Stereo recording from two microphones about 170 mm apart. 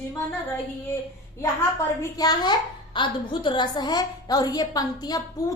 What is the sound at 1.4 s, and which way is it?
A woman's voice, 20° left (ahead or behind).